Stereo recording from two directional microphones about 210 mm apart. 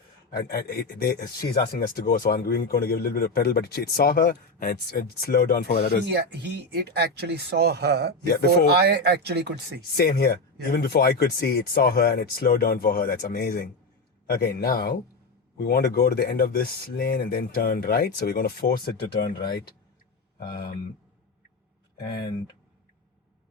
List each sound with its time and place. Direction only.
0.3 s a man's voice: 50° left (ahead or behind)
6.1 s speech: 50° right (ahead or behind)
9.9 s a man's voice: 50° left (ahead or behind)
21.9 s speech: 50° left (ahead or behind)